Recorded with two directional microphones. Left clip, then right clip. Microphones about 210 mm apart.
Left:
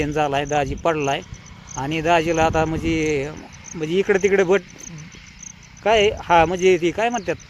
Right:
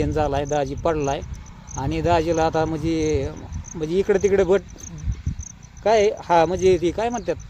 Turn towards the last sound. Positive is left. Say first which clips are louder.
# left 2 dB
turn(degrees=10)  # may be behind; listen again after turning